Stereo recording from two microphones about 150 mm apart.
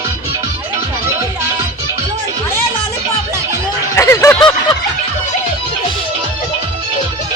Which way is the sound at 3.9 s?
20° left (ahead or behind).